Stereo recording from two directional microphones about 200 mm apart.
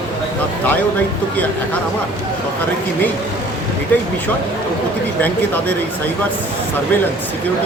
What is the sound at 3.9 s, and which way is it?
Speech, 10° left (ahead or behind).